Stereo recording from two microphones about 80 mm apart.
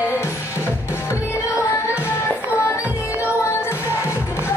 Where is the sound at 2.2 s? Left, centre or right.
Left.